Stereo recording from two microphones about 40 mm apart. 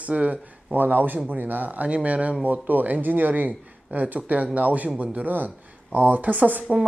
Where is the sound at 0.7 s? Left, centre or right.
Right.